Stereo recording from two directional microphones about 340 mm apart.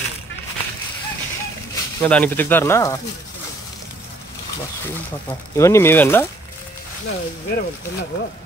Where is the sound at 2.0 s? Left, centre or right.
Centre.